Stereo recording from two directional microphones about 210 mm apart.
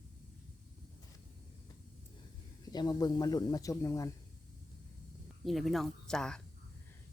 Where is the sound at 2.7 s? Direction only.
20° left (ahead or behind).